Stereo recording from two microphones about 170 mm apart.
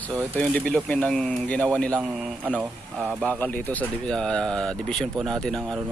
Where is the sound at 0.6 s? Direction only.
5° left (ahead or behind).